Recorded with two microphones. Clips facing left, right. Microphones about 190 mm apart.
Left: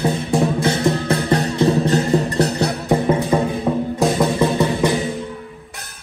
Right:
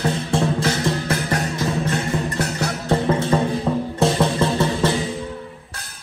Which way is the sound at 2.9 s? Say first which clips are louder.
Left 1 dB; 15° left (ahead or behind).